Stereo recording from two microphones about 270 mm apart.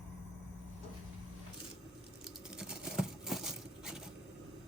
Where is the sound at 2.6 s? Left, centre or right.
Centre.